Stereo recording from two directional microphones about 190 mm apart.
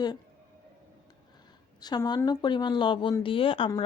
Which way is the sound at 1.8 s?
20° left (ahead or behind).